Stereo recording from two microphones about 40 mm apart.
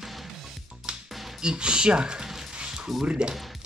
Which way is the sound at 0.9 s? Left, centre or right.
Right.